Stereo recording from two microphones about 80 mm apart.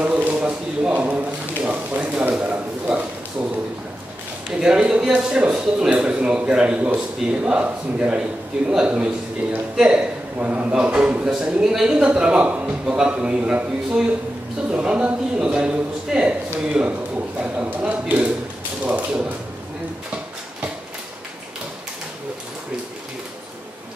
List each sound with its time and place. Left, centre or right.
0.0 s a sound: centre
4.5 s a man's voice: centre
17.4 s a man's voice: centre